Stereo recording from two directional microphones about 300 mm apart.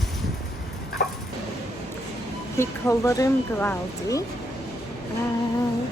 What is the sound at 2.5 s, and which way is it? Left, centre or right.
Speech, centre.